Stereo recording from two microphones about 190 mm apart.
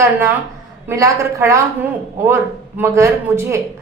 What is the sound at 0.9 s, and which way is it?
Speech, 15° right (ahead or behind).